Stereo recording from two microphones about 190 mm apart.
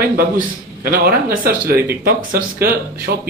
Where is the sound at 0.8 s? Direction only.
50° right (ahead or behind).